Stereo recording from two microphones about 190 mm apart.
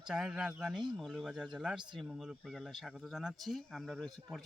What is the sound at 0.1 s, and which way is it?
Speech, 5° right (ahead or behind).